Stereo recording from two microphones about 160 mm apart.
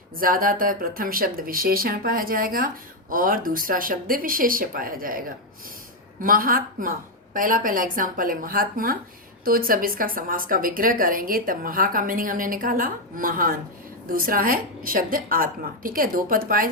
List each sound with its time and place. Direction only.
0.2 s a woman's voice: 60° right (ahead or behind)
6.2 s a woman's voice: 65° right (ahead or behind)